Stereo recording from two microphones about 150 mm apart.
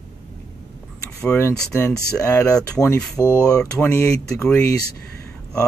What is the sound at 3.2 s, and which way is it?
Speech, 20° left (ahead or behind).